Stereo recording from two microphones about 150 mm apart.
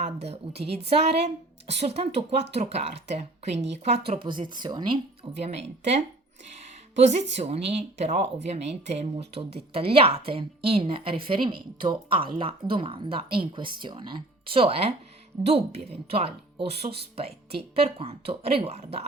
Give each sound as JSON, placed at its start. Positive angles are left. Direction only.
{"t": 0.0, "sound": "a woman's voice", "side_deg": -45}
{"t": 5.4, "sound": "a woman's voice", "side_deg": -45}
{"t": 7.1, "sound": "speech", "side_deg": -45}